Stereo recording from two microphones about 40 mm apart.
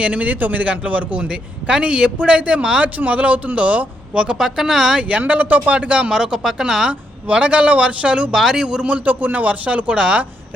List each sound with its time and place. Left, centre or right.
0.0 s a man's voice: right
4.4 s speech: centre
5.0 s a man's voice: right
5.7 s speech: right
6.1 s speech: centre
7.3 s a man's voice: right
8.4 s speech: centre
8.9 s a man's voice: right